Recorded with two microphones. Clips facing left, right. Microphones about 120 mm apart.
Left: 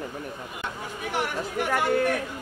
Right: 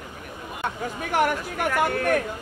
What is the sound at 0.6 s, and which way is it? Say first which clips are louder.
Speech: right 5 dB; 50° right (ahead or behind).